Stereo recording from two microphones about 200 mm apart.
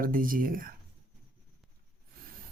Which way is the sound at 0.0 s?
45° right (ahead or behind).